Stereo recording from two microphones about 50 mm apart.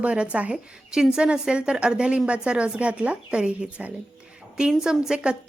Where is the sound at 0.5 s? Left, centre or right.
Centre.